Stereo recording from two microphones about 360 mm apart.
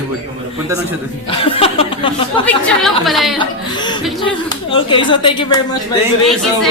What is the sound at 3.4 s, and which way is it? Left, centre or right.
A woman's voice, centre.